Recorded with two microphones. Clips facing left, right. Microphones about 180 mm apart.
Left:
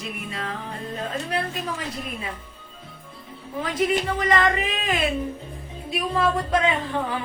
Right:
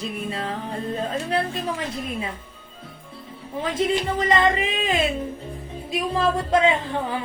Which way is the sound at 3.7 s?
25° right (ahead or behind).